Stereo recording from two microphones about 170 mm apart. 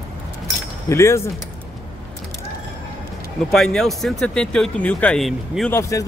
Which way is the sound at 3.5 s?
Centre (ahead or behind).